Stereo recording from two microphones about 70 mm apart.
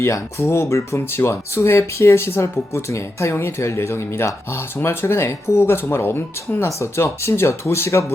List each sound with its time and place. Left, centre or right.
0.0 s speech: left